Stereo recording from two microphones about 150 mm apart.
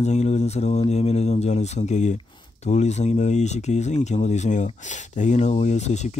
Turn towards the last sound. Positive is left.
turn(degrees=50)  # may be behind; listen again after turning